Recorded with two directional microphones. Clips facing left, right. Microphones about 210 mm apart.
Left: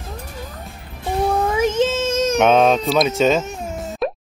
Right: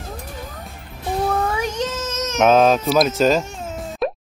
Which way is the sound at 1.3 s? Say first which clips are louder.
Left 4 dB; 20° left (ahead or behind).